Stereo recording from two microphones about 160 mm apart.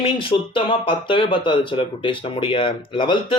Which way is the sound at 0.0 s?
35° left (ahead or behind).